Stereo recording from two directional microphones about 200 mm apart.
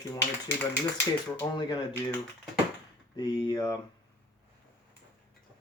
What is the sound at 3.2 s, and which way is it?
Mechanisms, 20° left (ahead or behind).